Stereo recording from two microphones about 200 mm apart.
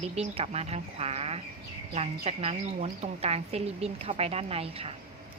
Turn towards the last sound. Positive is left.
turn(degrees=-30)  # may be behind; listen again after turning